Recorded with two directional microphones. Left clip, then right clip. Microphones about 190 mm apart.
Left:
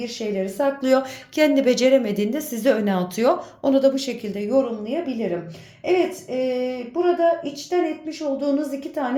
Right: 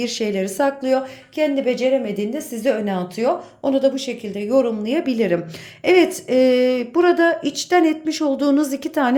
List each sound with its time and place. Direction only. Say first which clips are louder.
0.0 s a woman's voice: right 4 dB; 20° right (ahead or behind)
0.8 s a woman's voice: even; 5° left (ahead or behind)
4.5 s a woman's voice: right 4 dB; 25° right (ahead or behind)